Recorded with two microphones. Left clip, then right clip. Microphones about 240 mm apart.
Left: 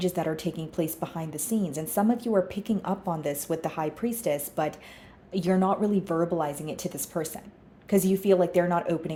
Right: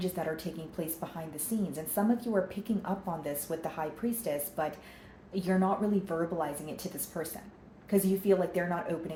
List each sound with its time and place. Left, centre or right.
0.0 s speech: left